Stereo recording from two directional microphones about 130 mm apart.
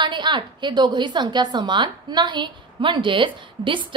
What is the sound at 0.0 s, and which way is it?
A woman's voice, 35° right (ahead or behind).